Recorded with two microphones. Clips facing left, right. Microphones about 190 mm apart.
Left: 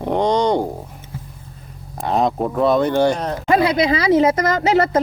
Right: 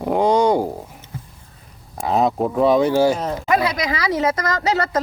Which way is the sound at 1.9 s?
Centre (ahead or behind).